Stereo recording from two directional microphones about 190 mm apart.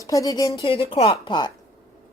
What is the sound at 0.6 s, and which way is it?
Speech, 30° left (ahead or behind).